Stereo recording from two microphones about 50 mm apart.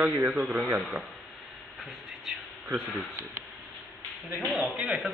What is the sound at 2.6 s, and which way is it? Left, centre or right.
Speech, right.